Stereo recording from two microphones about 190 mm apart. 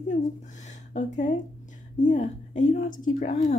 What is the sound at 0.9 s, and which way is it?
A woman's voice, 40° left (ahead or behind).